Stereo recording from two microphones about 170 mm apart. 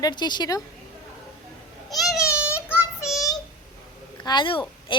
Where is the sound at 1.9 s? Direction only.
Centre (ahead or behind).